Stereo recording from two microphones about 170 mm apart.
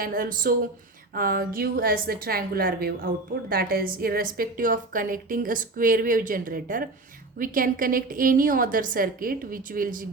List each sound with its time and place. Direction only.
0.0 s a woman's voice: 55° right (ahead or behind)